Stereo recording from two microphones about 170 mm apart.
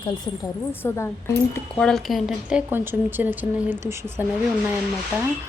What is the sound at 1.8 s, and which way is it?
Speech, centre (ahead or behind).